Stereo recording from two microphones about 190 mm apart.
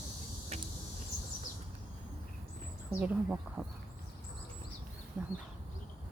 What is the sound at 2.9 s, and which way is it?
Speech, 10° right (ahead or behind).